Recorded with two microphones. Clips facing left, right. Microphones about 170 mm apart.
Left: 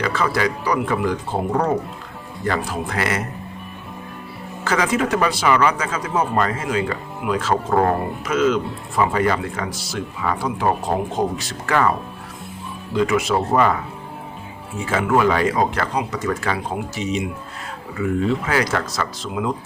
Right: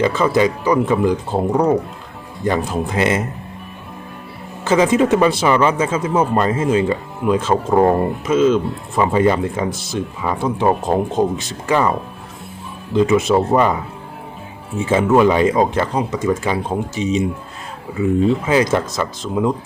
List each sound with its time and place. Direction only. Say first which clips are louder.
0.0 s speech: right 6 dB; 20° right (ahead or behind)
2.4 s speech: right 4 dB; 20° right (ahead or behind)
4.6 s speech: right 6 dB; 20° right (ahead or behind)
14.8 s speech: right 5 dB; 20° right (ahead or behind)